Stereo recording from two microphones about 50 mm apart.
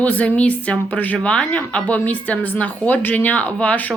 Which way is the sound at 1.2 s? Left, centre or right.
Left.